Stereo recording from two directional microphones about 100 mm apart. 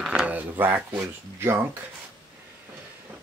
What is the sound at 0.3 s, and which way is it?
Speech, 15° right (ahead or behind).